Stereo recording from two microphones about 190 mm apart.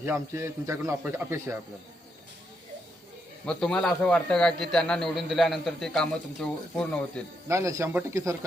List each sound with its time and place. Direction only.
0.0 s a man's voice: 15° right (ahead or behind)
3.4 s a man's voice: 5° left (ahead or behind)
7.4 s a man's voice: 15° right (ahead or behind)